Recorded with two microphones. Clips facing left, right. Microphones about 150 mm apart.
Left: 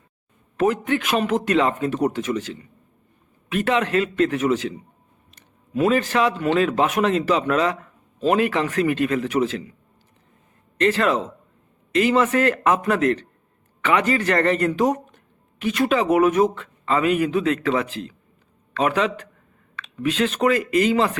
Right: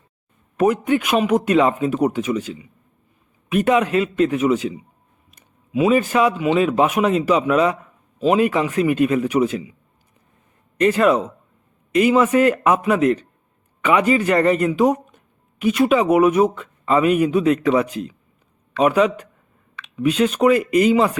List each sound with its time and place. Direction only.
0.6 s speech: 15° right (ahead or behind)
10.8 s speech: 15° right (ahead or behind)